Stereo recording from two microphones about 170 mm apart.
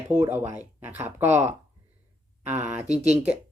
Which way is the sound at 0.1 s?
15° right (ahead or behind).